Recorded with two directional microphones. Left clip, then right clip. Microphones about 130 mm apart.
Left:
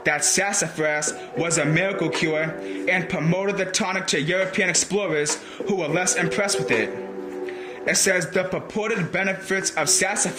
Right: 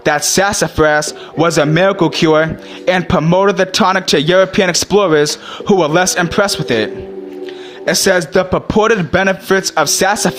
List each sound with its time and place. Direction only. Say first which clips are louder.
0.0 s speech: right 9 dB; 30° right (ahead or behind)
8.7 s speech: right 15 dB; 40° right (ahead or behind)